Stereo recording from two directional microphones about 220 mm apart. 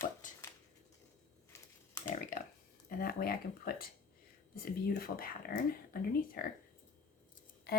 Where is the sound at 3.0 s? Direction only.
40° left (ahead or behind).